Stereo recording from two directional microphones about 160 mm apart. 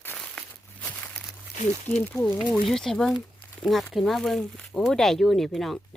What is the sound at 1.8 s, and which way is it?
Speech, 10° left (ahead or behind).